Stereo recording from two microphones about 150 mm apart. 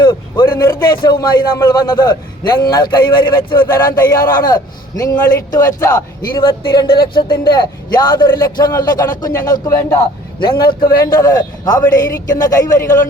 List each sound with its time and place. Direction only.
0.0 s a sound: 30° left (ahead or behind)
0.5 s a man's voice: 15° left (ahead or behind)
0.8 s a man's voice: 30° left (ahead or behind)
10.4 s speech: 30° left (ahead or behind)
10.8 s speech: 80° left
11.2 s a man's voice: 25° left (ahead or behind)
11.9 s a woman's voice: 65° left (ahead or behind)
12.5 s a man's voice: 20° left (ahead or behind)